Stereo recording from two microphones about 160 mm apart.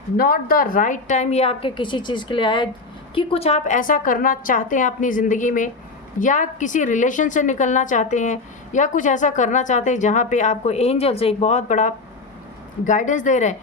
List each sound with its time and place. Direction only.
0.2 s a woman's voice: 65° left (ahead or behind)